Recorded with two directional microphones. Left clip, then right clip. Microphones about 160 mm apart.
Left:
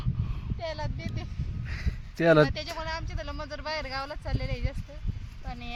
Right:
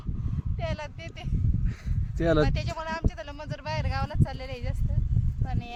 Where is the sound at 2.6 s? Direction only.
35° right (ahead or behind).